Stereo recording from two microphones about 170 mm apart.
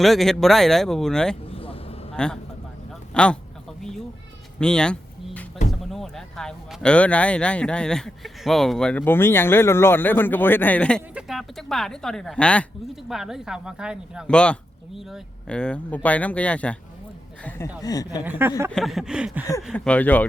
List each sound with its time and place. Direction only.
0.0 s speech: centre (ahead or behind)
1.5 s vehicle: 35° left (ahead or behind)
2.1 s a man's voice: 5° left (ahead or behind)
4.6 s a sound: 5° left (ahead or behind)
5.8 s speech: centre (ahead or behind)
11.1 s speech: 5° right (ahead or behind)
14.3 s speech: 5° left (ahead or behind)
17.8 s a woman's voice: 20° left (ahead or behind)
18.3 s speech: 15° right (ahead or behind)
18.7 s speech: centre (ahead or behind)
19.6 s speech: 5° left (ahead or behind)